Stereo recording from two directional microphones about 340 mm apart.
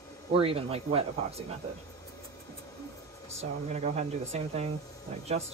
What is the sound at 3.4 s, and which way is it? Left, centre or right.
Speech, centre.